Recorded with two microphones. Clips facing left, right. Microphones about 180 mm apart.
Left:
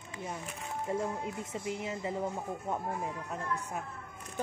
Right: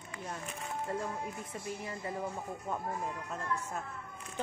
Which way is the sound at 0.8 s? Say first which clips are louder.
Left 4 dB; 20° left (ahead or behind).